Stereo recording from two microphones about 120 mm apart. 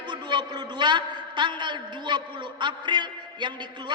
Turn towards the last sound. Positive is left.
turn(degrees=-40)  # may be behind; listen again after turning